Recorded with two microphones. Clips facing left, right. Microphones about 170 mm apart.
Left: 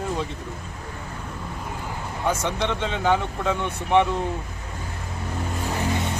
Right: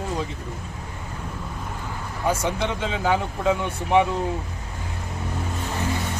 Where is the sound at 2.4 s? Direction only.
5° right (ahead or behind).